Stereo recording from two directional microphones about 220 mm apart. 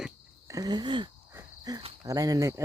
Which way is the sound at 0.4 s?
15° right (ahead or behind).